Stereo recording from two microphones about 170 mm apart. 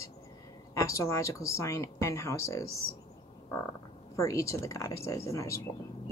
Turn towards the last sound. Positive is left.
turn(degrees=15)  # may be behind; listen again after turning